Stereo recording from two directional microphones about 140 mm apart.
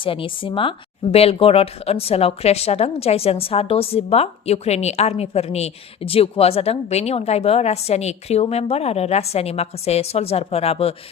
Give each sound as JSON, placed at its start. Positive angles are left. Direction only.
{"t": 0.0, "sound": "speech", "side_deg": 40}